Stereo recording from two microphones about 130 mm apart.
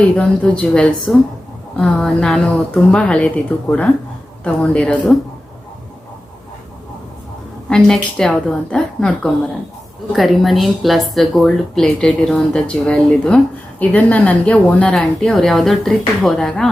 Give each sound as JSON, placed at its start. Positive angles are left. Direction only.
{"t": 0.0, "sound": "a woman's voice", "side_deg": 10}
{"t": 7.7, "sound": "a woman's voice", "side_deg": 5}